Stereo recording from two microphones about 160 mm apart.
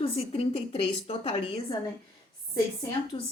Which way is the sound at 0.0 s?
35° left (ahead or behind).